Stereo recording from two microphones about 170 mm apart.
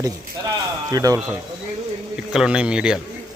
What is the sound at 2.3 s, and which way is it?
Speech, 5° right (ahead or behind).